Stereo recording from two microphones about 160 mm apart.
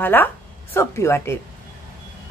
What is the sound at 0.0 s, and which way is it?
A woman's voice, 10° left (ahead or behind).